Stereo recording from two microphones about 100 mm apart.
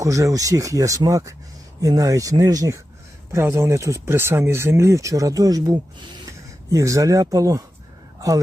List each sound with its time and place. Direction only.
0.0 s speech: 30° right (ahead or behind)